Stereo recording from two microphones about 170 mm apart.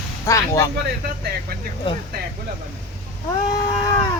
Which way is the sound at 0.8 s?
60° right (ahead or behind).